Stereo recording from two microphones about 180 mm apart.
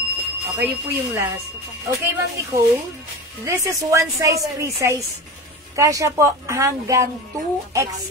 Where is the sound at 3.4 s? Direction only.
15° right (ahead or behind).